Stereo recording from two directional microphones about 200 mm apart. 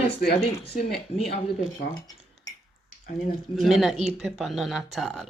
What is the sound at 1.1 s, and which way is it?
Speech, 30° left (ahead or behind).